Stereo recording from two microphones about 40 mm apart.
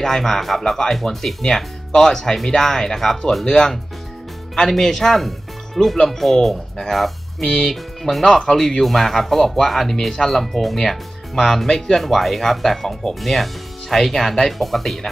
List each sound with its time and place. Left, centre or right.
0.0 s speech: centre
4.6 s speech: centre
12.0 s speech: centre